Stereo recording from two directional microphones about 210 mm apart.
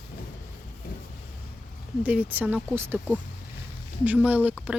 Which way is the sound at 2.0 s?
5° right (ahead or behind).